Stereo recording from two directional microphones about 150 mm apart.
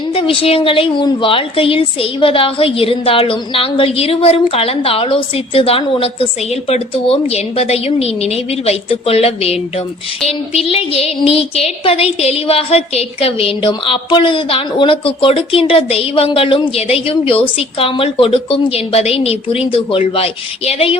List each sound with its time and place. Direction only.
0.1 s a woman's voice: 40° left (ahead or behind)